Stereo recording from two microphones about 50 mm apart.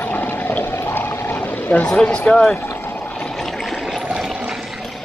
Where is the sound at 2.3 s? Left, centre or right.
Centre.